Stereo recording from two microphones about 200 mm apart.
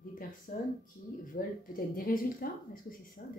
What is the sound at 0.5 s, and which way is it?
Speech, 45° left (ahead or behind).